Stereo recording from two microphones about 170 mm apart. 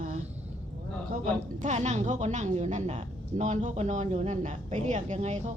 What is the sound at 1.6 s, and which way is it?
A woman's voice, 45° right (ahead or behind).